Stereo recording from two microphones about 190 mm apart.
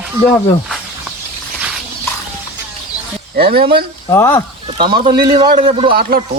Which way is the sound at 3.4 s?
55° right (ahead or behind).